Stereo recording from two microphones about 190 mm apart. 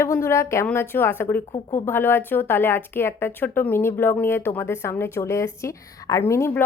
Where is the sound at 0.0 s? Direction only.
15° left (ahead or behind).